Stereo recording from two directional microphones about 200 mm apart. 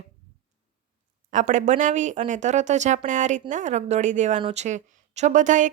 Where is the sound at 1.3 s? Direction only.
40° right (ahead or behind).